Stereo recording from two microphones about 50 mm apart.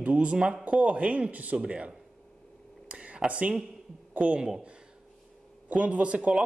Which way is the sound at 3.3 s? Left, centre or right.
Right.